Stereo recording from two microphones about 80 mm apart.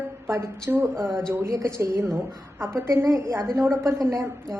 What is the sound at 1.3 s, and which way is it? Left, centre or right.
A woman's voice, right.